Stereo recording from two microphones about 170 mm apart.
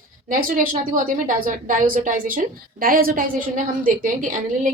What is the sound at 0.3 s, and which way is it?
A woman's voice, 55° right (ahead or behind).